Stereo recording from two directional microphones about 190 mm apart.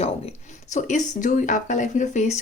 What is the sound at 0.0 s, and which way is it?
Speech, 35° left (ahead or behind).